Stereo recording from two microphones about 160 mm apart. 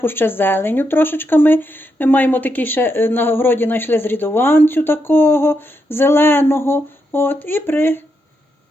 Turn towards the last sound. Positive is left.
turn(degrees=15)  # may be behind; listen again after turning